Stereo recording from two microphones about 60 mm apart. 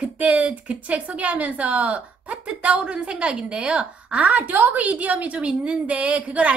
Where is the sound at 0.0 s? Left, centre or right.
Right.